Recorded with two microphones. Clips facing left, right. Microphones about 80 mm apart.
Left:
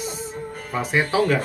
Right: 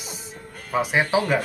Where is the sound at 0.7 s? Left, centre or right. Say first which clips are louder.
Right 1 dB; centre.